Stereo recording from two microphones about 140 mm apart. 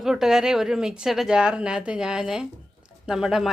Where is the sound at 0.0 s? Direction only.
5° right (ahead or behind).